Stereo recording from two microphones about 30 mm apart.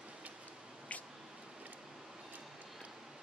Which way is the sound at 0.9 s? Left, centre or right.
Left.